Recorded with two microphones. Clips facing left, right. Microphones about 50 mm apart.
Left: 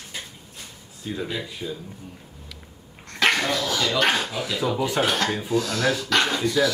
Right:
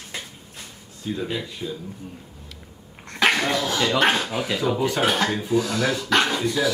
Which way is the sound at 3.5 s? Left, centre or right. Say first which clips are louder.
Right 2 dB; right.